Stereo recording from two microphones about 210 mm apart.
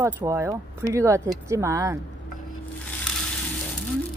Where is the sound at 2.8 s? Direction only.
5° left (ahead or behind).